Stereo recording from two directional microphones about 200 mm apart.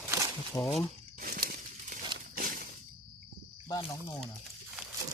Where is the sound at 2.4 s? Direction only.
45° right (ahead or behind).